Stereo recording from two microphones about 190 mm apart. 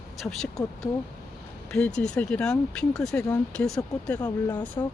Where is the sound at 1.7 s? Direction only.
5° left (ahead or behind).